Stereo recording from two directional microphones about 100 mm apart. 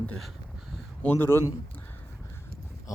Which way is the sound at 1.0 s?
20° left (ahead or behind).